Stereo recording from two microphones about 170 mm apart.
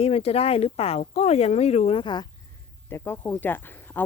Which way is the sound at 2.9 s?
15° left (ahead or behind).